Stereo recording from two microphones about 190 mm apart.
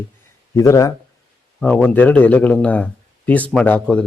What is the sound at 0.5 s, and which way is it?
Speech, 15° left (ahead or behind).